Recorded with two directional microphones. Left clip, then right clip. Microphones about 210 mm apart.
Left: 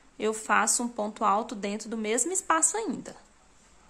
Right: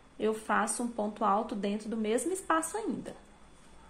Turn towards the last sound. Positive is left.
turn(degrees=15)  # may be behind; listen again after turning